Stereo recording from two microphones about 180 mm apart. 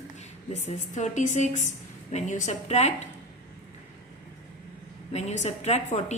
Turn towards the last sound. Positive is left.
turn(degrees=40)  # may be behind; listen again after turning